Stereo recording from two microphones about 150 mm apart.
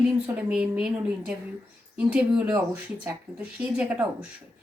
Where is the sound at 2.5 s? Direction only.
20° right (ahead or behind).